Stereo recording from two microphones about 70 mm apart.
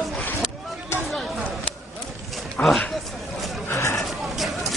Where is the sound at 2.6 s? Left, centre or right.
Left.